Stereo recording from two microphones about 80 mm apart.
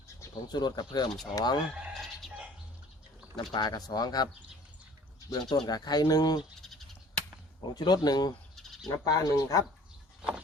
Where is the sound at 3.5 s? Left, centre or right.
Left.